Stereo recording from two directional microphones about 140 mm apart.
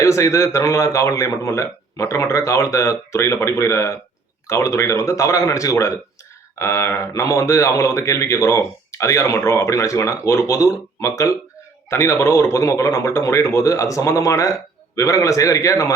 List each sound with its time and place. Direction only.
0.0 s speech: 20° left (ahead or behind)